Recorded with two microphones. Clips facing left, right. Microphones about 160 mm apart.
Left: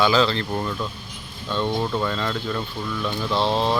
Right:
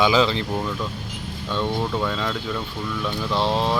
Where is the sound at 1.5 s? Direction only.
5° right (ahead or behind).